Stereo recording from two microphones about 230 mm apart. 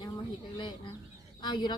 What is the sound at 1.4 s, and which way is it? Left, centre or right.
Speech, centre.